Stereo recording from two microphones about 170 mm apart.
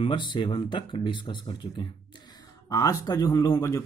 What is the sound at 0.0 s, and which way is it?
Speech, 30° left (ahead or behind).